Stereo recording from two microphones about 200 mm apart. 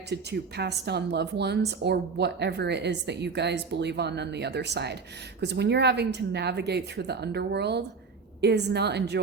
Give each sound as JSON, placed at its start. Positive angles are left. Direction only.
{"t": 0.1, "sound": "speech", "side_deg": -55}